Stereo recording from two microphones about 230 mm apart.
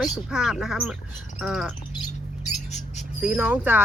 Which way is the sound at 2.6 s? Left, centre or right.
Left.